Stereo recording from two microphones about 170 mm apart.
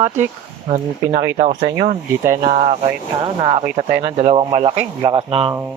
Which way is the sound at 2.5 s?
50° right (ahead or behind).